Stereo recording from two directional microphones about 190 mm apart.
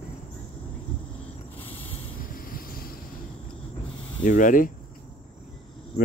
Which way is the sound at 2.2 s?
50° left (ahead or behind).